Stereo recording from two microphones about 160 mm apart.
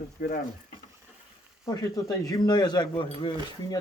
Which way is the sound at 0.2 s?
65° left (ahead or behind).